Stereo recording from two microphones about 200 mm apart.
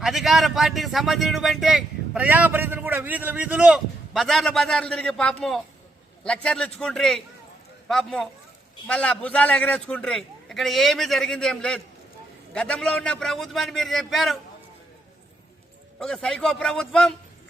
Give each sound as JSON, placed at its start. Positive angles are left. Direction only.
{"t": 0.0, "sound": "speech", "side_deg": 0}
{"t": 16.0, "sound": "speech", "side_deg": 0}